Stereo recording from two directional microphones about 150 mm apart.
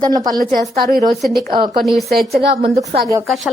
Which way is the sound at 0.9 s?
70° right (ahead or behind).